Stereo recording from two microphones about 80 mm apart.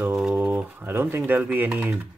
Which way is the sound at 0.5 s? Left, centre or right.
Right.